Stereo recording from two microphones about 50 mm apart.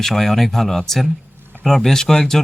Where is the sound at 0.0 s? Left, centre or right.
Centre.